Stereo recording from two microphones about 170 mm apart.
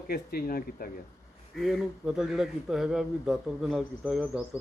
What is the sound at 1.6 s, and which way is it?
A man's voice, centre (ahead or behind).